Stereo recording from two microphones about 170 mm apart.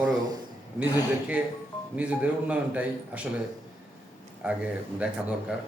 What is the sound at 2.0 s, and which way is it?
A man's voice, 5° right (ahead or behind).